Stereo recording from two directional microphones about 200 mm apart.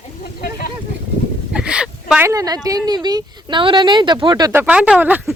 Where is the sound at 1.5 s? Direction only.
5° right (ahead or behind).